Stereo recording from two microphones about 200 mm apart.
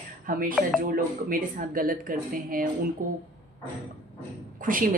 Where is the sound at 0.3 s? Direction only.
45° right (ahead or behind).